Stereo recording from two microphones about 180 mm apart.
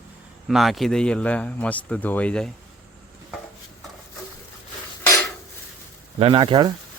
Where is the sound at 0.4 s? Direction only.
Centre (ahead or behind).